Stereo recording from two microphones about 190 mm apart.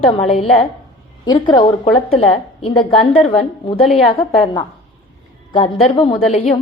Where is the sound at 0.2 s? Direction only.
35° left (ahead or behind).